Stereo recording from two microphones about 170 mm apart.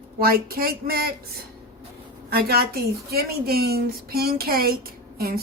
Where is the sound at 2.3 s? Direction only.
65° right (ahead or behind).